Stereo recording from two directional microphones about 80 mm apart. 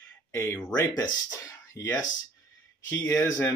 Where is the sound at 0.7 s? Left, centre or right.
Left.